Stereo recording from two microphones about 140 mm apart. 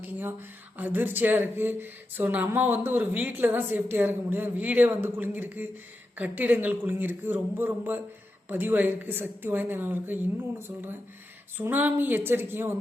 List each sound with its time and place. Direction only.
0.1 s speech: 15° right (ahead or behind)